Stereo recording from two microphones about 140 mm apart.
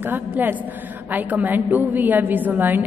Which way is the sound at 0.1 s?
15° right (ahead or behind).